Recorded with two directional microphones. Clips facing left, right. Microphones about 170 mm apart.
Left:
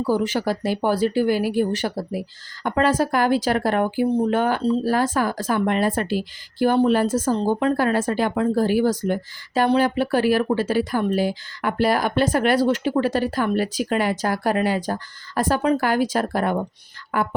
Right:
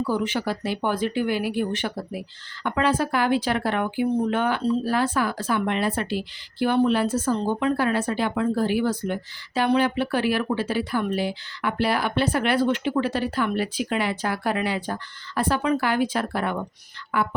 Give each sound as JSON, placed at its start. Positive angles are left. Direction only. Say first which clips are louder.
{"t": 0.0, "sound": "speech", "louder": "left 3 dB", "side_deg": 40}